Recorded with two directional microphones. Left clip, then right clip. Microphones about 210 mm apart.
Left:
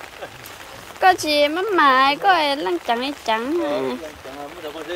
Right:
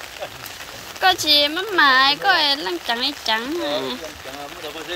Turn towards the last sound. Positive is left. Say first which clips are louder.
# left 2 dB
turn(degrees=20)  # may be behind; listen again after turning